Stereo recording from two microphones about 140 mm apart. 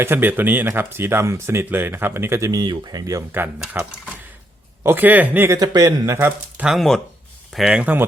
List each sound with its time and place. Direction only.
0.0 s speech: 15° right (ahead or behind)
5.5 s speech: 30° right (ahead or behind); by 6.7 s 10° right (ahead or behind)
6.7 s speech: 5° left (ahead or behind)